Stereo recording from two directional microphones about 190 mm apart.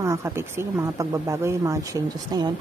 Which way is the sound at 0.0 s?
15° right (ahead or behind).